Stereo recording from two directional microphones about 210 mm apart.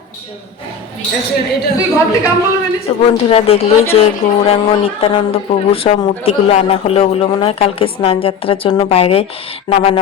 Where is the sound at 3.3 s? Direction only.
30° left (ahead or behind).